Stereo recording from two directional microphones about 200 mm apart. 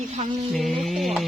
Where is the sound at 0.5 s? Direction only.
Centre (ahead or behind).